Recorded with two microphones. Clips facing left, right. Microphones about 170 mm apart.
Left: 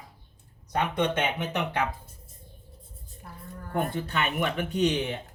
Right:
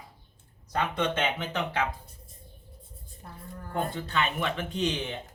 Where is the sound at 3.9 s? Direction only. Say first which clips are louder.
Left 1 dB; 15° left (ahead or behind).